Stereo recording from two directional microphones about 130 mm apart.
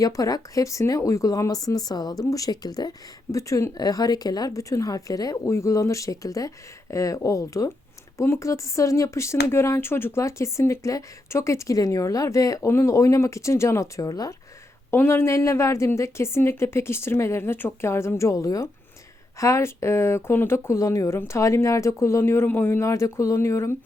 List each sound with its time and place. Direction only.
0.0 s speech: 30° left (ahead or behind)